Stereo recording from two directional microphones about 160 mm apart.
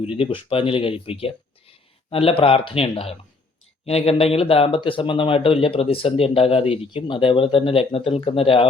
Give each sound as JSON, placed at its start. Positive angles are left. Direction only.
{"t": 0.0, "sound": "speech", "side_deg": 35}